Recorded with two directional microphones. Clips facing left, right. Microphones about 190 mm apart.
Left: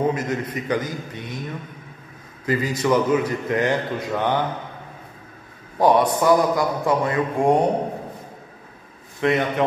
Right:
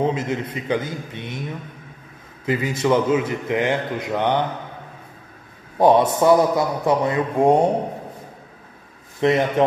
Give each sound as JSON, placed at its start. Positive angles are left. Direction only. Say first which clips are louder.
{"t": 0.0, "sound": "a man's voice", "louder": "even", "side_deg": -25}
{"t": 2.4, "sound": "a man's voice", "louder": "right 1 dB", "side_deg": -25}
{"t": 5.8, "sound": "a man's voice", "louder": "right 2 dB", "side_deg": -25}
{"t": 9.2, "sound": "a man's voice", "louder": "right 3 dB", "side_deg": -30}